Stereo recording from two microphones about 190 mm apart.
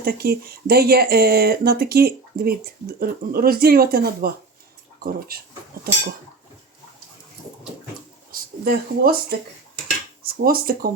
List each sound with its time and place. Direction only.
0.0 s speech: 55° right (ahead or behind)
5.3 s speech: 50° right (ahead or behind)
8.3 s speech: 50° right (ahead or behind)